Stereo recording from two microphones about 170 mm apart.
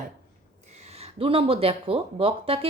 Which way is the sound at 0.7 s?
40° right (ahead or behind).